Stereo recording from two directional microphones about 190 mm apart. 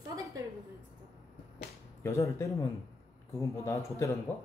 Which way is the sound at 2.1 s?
15° left (ahead or behind).